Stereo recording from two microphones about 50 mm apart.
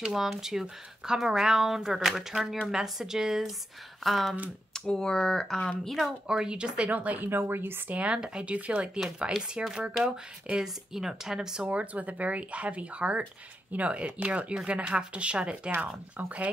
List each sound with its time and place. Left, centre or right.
0.0 s speech: centre
4.0 s speech: centre
4.7 s speech: centre
6.2 s speech: centre
6.9 s speech: right
7.2 s speech: right
7.9 s speech: right
11.6 s speech: right